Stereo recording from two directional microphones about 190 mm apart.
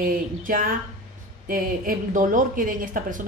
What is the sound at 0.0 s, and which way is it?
A woman's voice, 50° right (ahead or behind).